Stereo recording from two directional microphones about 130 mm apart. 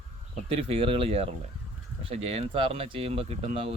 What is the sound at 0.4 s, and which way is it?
Speech, 45° right (ahead or behind).